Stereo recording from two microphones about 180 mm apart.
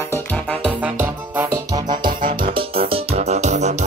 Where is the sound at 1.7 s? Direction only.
20° right (ahead or behind).